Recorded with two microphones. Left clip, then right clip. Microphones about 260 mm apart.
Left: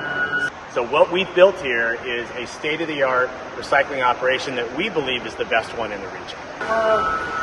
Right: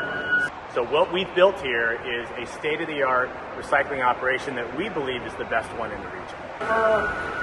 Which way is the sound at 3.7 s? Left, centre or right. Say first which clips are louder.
Left 4 dB; left.